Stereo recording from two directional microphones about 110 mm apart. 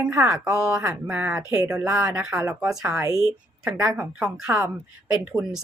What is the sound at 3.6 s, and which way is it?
Speech, 25° right (ahead or behind).